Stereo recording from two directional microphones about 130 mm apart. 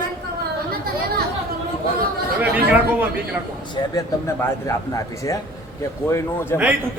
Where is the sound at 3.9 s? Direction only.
25° left (ahead or behind).